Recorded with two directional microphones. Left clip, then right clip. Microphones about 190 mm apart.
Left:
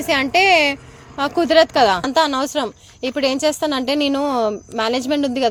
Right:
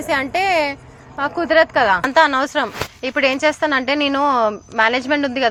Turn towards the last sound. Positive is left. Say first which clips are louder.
# right 1 dB
turn(degrees=35)  # may be behind; listen again after turning